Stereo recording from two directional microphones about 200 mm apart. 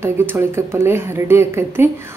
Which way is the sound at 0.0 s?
10° right (ahead or behind).